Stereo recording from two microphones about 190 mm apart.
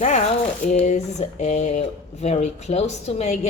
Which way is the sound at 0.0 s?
40° left (ahead or behind).